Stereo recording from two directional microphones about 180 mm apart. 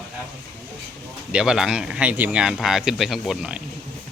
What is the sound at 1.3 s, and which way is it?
Speech, 5° right (ahead or behind).